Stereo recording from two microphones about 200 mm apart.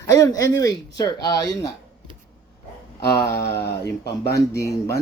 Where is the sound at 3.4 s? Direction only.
55° left (ahead or behind).